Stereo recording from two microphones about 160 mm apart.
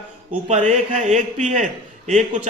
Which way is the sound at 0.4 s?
45° right (ahead or behind).